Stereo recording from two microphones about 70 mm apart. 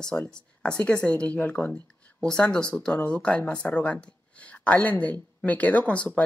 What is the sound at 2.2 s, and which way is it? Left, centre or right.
Speech, centre.